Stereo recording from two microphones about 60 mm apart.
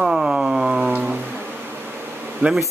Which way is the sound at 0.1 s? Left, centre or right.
Centre.